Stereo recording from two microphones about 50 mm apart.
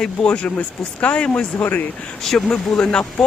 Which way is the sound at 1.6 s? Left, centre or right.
Left.